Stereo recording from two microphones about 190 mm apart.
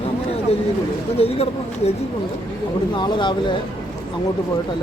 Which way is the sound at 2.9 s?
25° left (ahead or behind).